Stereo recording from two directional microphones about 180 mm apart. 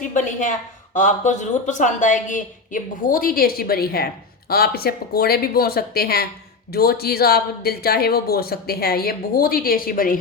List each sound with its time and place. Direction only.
0.1 s a woman's voice: 45° left (ahead or behind)